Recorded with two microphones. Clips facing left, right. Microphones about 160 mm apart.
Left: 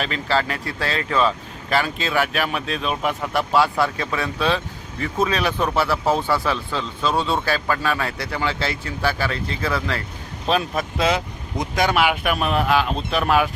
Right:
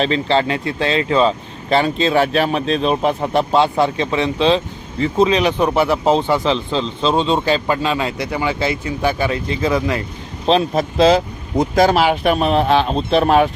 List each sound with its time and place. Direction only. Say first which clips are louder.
0.0 s speech: right 6 dB; 30° right (ahead or behind)
10.4 s speech: right 6 dB; 30° right (ahead or behind)